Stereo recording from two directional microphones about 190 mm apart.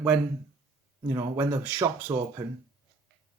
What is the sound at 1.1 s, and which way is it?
Speech, 15° right (ahead or behind).